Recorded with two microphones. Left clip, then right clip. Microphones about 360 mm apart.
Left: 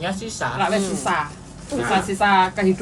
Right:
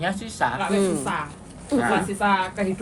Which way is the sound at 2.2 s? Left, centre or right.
Left.